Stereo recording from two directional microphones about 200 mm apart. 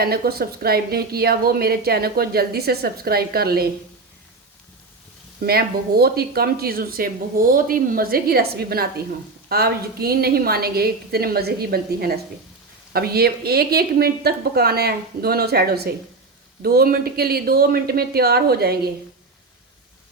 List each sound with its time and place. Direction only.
0.0 s a woman's voice: 50° right (ahead or behind)
5.4 s a woman's voice: 50° right (ahead or behind)